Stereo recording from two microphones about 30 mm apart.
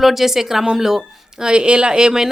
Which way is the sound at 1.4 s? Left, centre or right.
Right.